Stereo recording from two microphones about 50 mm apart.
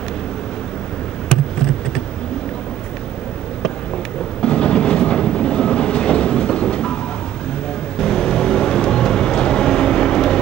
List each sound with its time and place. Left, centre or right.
1.3 s a sound: centre
4.4 s train: centre
8.0 s vehicle: centre